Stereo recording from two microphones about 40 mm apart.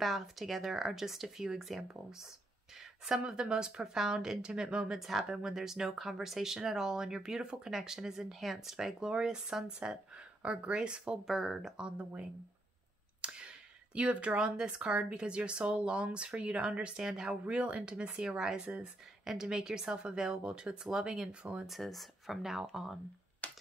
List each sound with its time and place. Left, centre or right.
0.0 s speech: centre
3.3 s speech: centre
4.9 s speech: centre; by 11.1 s right
11.2 s speech: centre
13.2 s speech: right
18.6 s speech: right
19.2 s speech: centre
21.4 s speech: right
21.6 s speech: centre
23.4 s finger snapping: left